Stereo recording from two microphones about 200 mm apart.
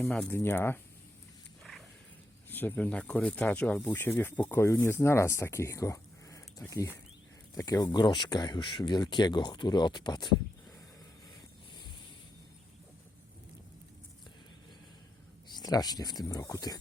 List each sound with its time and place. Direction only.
0.0 s speech: 5° left (ahead or behind)
2.5 s speech: 10° left (ahead or behind)
15.5 s speech: 20° left (ahead or behind)